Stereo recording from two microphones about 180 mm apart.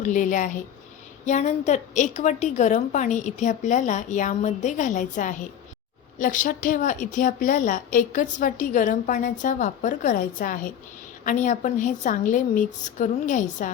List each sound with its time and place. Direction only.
0.0 s a woman's voice: 45° left (ahead or behind)